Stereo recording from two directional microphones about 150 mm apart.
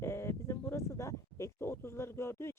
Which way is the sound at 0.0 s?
15° left (ahead or behind).